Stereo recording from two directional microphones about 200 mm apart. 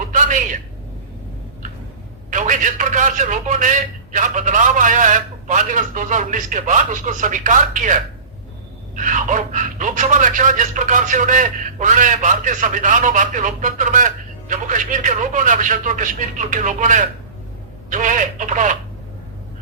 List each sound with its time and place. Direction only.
0.1 s a sound: 40° right (ahead or behind)
2.3 s speech: 40° right (ahead or behind)
9.0 s speech: 40° right (ahead or behind)